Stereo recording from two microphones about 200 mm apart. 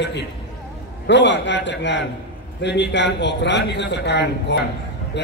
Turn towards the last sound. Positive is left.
turn(degrees=60)  # may be behind; listen again after turning